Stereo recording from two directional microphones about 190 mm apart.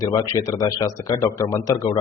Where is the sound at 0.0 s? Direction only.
20° left (ahead or behind).